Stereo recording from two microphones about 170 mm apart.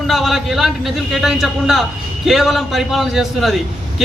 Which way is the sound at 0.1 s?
Centre (ahead or behind).